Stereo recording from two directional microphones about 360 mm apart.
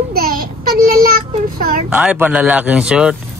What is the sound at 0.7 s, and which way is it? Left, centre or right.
Child singing, right.